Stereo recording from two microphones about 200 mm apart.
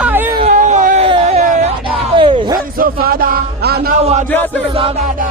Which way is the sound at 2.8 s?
45° right (ahead or behind).